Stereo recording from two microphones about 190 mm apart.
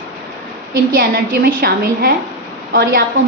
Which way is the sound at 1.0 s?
50° right (ahead or behind).